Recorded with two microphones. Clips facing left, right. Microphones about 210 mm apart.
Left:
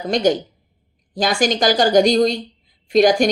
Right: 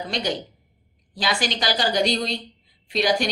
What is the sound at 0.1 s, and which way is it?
A woman's voice, 45° left (ahead or behind).